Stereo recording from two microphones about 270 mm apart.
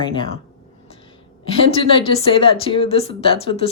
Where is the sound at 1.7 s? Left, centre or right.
Centre.